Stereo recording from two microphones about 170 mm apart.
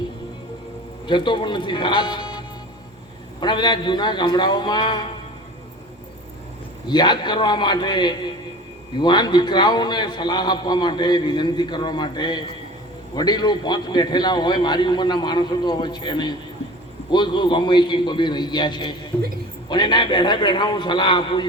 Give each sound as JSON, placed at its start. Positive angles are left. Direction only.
{"t": 1.0, "sound": "a man's voice", "side_deg": 30}
{"t": 3.4, "sound": "a man's voice", "side_deg": 25}
{"t": 6.8, "sound": "a man's voice", "side_deg": 25}